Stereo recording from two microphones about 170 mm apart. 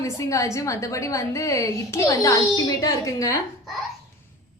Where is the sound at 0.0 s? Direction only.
20° left (ahead or behind).